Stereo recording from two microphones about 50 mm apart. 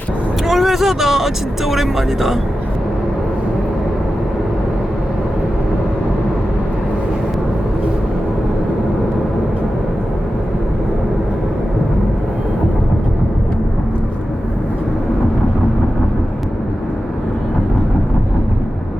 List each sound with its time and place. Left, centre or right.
0.4 s speech: centre